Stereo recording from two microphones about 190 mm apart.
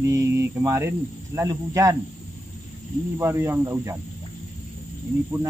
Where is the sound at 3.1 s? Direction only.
10° right (ahead or behind).